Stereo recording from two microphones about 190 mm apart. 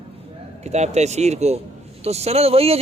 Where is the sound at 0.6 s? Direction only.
35° right (ahead or behind).